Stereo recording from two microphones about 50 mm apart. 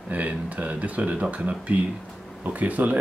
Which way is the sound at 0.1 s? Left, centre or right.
Right.